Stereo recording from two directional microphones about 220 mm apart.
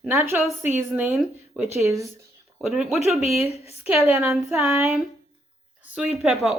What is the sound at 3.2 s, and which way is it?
Speech, 30° left (ahead or behind).